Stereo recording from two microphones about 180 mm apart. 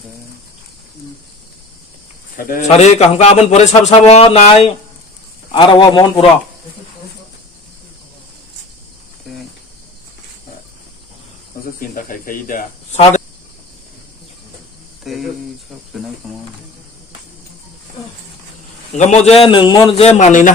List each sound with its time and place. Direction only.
2.5 s a man's voice: 40° left (ahead or behind)
11.9 s speech: 50° left (ahead or behind)
15.0 s speech: centre (ahead or behind)
18.9 s a man's voice: 40° left (ahead or behind)